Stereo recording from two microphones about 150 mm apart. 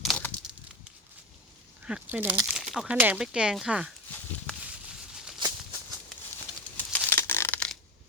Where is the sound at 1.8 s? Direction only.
10° right (ahead or behind).